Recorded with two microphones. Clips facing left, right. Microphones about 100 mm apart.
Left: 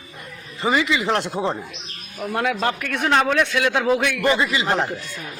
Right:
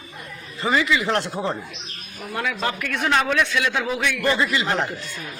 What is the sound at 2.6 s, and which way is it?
Speech, 40° left (ahead or behind).